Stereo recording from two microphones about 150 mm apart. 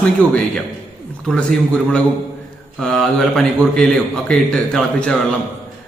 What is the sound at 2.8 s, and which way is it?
A man's voice, centre (ahead or behind).